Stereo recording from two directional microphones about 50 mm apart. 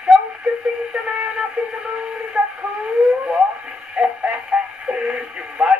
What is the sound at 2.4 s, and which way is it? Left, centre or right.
Radio, right.